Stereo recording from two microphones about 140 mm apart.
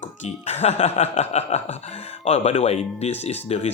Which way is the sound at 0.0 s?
60° left (ahead or behind).